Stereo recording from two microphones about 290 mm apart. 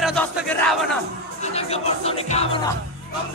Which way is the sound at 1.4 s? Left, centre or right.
Left.